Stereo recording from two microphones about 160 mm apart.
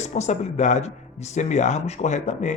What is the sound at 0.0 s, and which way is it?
Speech, 45° left (ahead or behind).